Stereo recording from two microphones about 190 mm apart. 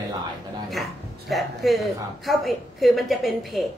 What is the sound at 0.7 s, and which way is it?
A woman's voice, centre (ahead or behind).